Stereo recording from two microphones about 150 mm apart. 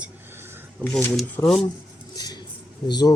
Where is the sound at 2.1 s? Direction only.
25° left (ahead or behind).